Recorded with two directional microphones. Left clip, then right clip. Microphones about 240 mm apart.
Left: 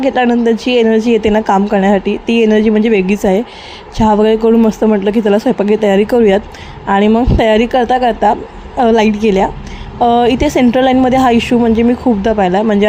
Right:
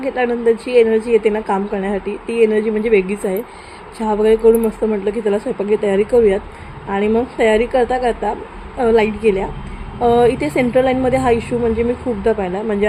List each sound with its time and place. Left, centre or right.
0.1 s a woman's voice: left